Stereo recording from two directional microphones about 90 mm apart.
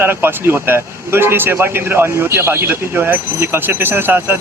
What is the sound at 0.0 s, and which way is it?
A man's voice, 25° right (ahead or behind).